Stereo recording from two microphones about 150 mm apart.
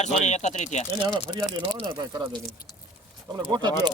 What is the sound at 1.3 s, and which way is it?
Speech, 25° right (ahead or behind).